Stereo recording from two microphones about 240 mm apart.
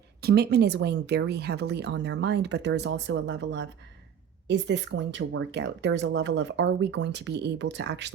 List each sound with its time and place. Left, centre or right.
0.2 s speech: right